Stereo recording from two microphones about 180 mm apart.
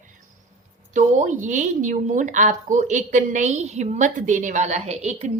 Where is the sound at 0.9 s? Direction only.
45° right (ahead or behind).